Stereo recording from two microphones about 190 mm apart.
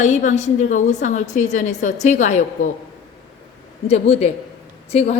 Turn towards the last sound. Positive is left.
turn(degrees=35)  # may be behind; listen again after turning